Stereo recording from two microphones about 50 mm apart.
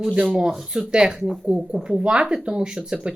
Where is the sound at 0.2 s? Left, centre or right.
Centre.